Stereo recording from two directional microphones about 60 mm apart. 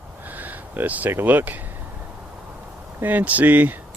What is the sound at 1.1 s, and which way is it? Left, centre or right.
Speech, right.